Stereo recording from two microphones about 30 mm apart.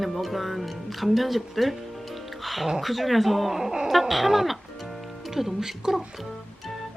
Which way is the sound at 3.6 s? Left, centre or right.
Centre.